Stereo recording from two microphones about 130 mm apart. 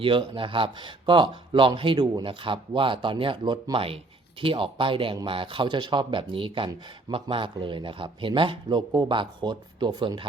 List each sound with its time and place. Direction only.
0.0 s speech: 40° right (ahead or behind)